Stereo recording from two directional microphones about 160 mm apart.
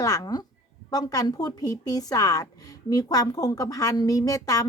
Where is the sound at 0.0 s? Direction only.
20° left (ahead or behind).